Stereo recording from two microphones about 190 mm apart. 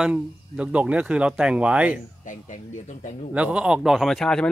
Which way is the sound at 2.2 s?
40° left (ahead or behind).